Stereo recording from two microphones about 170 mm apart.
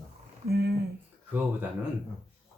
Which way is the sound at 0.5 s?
70° right (ahead or behind).